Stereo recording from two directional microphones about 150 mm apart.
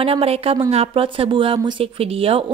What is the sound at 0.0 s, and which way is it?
A woman's voice, 40° right (ahead or behind).